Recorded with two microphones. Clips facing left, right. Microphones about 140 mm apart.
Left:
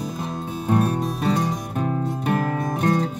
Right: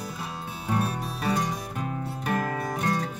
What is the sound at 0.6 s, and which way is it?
Music, 40° left (ahead or behind).